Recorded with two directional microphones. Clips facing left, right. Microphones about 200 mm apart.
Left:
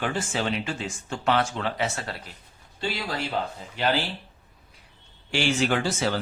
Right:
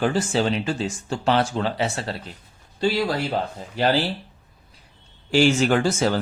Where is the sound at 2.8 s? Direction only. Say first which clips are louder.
Right 8 dB; 40° right (ahead or behind).